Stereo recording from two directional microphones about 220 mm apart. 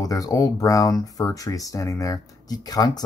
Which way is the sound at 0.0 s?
15° left (ahead or behind).